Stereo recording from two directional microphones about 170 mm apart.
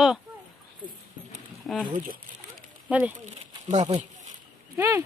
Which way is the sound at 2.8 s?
10° right (ahead or behind).